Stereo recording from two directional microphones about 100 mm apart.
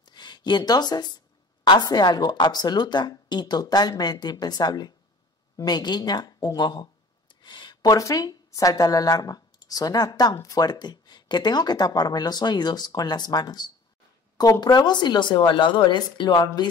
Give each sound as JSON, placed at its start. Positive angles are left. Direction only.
{"t": 0.0, "sound": "a woman's voice", "side_deg": 45}
{"t": 7.4, "sound": "a sound", "side_deg": 50}
{"t": 7.8, "sound": "a woman's voice", "side_deg": 35}